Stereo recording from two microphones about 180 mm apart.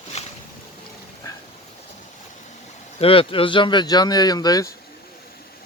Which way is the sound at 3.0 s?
30° left (ahead or behind).